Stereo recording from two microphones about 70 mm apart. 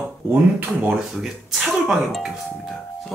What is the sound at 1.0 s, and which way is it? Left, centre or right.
Speech, centre.